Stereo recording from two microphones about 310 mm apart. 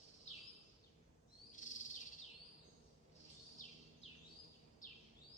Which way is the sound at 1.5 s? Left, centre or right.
Left.